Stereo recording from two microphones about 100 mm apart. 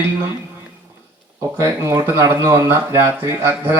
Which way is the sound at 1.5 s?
30° right (ahead or behind).